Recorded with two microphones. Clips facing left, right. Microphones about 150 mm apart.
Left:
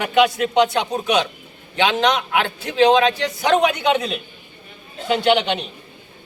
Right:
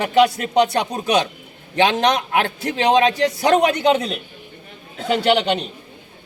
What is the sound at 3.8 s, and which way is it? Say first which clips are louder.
Speech: right 2 dB; 40° right (ahead or behind).